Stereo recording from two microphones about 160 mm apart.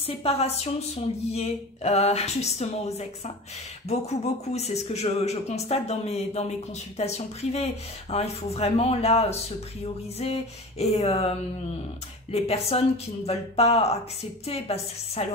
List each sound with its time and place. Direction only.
0.0 s speech: 40° left (ahead or behind)